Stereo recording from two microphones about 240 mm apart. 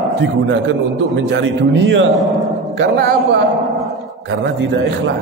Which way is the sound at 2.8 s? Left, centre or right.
Right.